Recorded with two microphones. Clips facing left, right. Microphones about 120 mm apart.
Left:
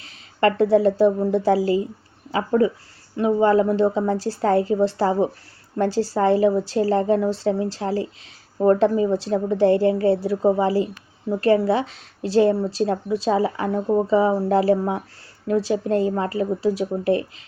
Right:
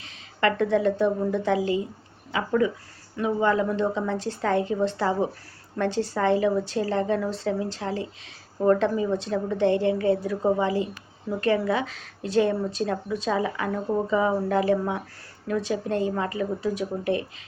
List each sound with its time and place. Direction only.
0.0 s a woman's voice: 35° left (ahead or behind)